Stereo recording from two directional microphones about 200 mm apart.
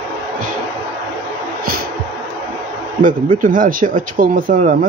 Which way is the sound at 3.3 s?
45° right (ahead or behind).